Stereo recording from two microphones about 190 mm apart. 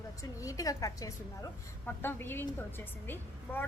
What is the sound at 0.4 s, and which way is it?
A woman's voice, 20° left (ahead or behind).